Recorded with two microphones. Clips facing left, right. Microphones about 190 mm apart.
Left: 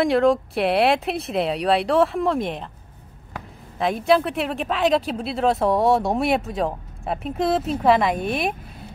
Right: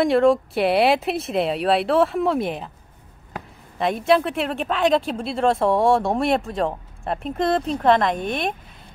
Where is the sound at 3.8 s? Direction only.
Centre (ahead or behind).